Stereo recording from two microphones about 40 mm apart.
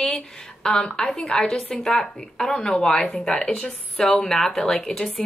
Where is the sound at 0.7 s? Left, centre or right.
Centre.